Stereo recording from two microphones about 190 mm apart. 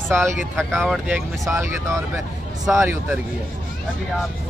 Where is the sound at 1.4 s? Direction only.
15° right (ahead or behind).